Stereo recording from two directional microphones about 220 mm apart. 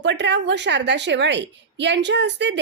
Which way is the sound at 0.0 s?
55° right (ahead or behind).